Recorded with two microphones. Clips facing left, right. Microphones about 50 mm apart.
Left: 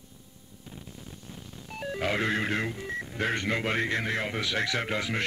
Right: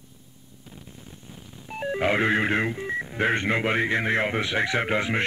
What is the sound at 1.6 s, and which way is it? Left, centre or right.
Speech, right.